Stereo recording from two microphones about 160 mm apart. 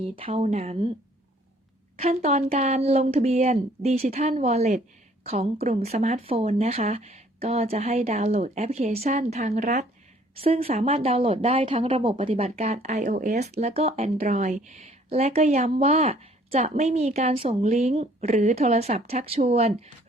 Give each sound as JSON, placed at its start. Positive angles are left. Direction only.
{"t": 0.0, "sound": "a woman's voice", "side_deg": -35}
{"t": 2.0, "sound": "a woman's voice", "side_deg": -40}
{"t": 10.3, "sound": "a woman's voice", "side_deg": -40}